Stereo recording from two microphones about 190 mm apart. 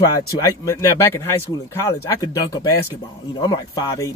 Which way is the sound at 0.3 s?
15° left (ahead or behind).